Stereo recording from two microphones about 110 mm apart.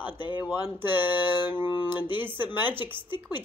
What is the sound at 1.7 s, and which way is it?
Speech, 45° left (ahead or behind).